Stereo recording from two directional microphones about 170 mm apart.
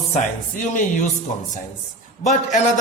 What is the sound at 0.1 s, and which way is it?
Speech, 45° left (ahead or behind).